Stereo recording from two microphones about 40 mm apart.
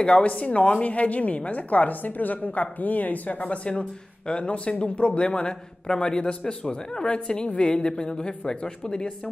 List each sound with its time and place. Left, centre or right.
0.0 s a woman's voice: left